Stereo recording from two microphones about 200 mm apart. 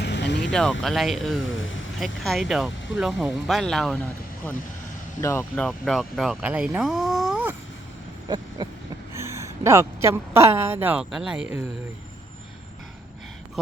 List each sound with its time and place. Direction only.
0.0 s vehicle: 60° left (ahead or behind)
0.5 s speech: 5° left (ahead or behind)
1.4 s vehicle: 75° left (ahead or behind)
2.0 s speech: centre (ahead or behind)
5.2 s speech: 15° left (ahead or behind); by 7.5 s 5° right (ahead or behind)
8.6 s a sound: 20° right (ahead or behind)
9.1 s speech: 15° right (ahead or behind)